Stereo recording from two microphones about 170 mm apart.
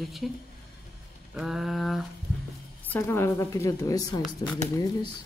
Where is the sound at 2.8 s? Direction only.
10° left (ahead or behind).